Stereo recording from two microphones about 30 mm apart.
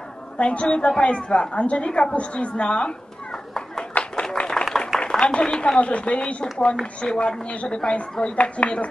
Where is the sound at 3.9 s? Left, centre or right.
Left.